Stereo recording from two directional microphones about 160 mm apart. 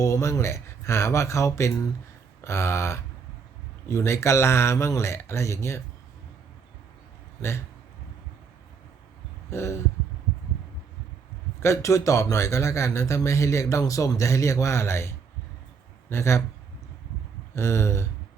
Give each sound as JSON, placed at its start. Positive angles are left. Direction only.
{"t": 0.0, "sound": "speech", "side_deg": 15}
{"t": 9.5, "sound": "speech", "side_deg": 15}
{"t": 11.6, "sound": "speech", "side_deg": 20}
{"t": 17.5, "sound": "speech", "side_deg": 15}